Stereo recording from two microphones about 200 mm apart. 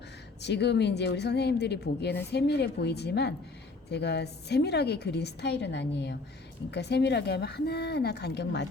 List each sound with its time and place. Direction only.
0.4 s a woman's voice: 60° left (ahead or behind)